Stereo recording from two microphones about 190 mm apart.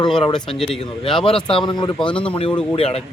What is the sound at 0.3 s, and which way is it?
Speech, centre (ahead or behind).